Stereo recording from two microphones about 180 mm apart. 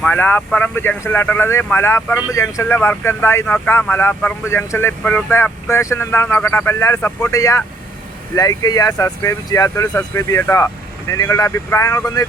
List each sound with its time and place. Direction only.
0.0 s speech: 10° left (ahead or behind)